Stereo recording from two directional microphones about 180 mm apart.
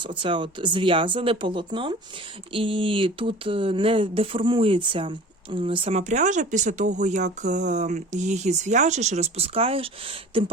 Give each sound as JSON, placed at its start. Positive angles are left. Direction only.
{"t": 0.0, "sound": "speech", "side_deg": -25}